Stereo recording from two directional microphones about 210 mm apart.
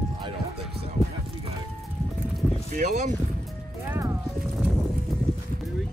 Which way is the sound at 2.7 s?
35° right (ahead or behind).